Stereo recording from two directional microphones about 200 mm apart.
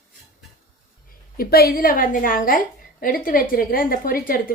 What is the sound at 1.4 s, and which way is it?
A woman's voice, 50° left (ahead or behind).